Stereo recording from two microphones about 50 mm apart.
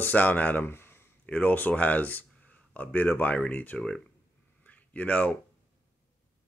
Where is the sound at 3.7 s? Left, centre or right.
Centre.